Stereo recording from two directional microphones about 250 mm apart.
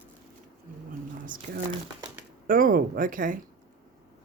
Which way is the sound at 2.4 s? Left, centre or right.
Right.